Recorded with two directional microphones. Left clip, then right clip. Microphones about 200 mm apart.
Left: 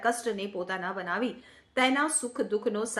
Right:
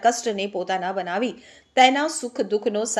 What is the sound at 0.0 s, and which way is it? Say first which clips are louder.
A woman's voice: right 8 dB; 20° right (ahead or behind).